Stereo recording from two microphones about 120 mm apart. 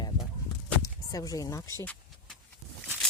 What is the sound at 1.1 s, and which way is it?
Speech, 30° left (ahead or behind).